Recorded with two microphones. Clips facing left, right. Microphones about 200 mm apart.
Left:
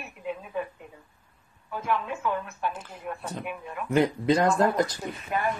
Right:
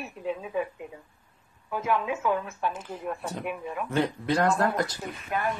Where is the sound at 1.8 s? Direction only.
5° right (ahead or behind).